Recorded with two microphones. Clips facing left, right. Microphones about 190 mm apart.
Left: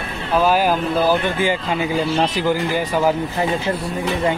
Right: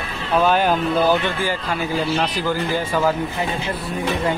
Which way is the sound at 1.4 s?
20° left (ahead or behind).